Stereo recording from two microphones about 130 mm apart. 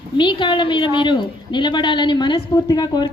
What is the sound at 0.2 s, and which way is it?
A woman's voice, 35° left (ahead or behind).